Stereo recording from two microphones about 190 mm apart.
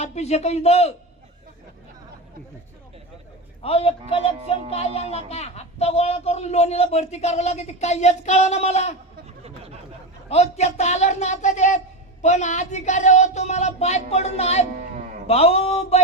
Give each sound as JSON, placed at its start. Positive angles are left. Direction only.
{"t": 0.0, "sound": "speech", "side_deg": 35}
{"t": 3.6, "sound": "speech", "side_deg": 30}
{"t": 10.2, "sound": "speech", "side_deg": 35}